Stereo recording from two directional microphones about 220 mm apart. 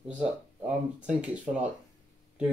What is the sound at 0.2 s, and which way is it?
Speech, 5° right (ahead or behind).